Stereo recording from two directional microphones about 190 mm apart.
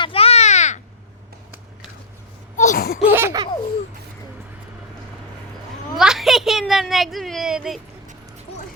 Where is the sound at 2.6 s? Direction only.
50° left (ahead or behind).